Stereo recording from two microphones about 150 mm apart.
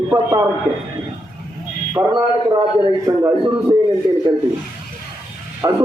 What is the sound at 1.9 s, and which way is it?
A man's voice, 20° right (ahead or behind).